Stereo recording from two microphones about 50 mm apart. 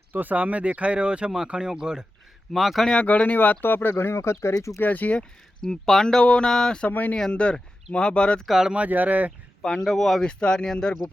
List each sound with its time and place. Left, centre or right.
0.1 s speech: right; by 2.0 s centre
2.5 s speech: centre
2.8 s speech: centre
3.1 s speech: left
4.8 s speech: left
5.6 s speech: centre
8.4 s speech: centre
8.7 s speech: right
9.8 s speech: centre
10.2 s speech: centre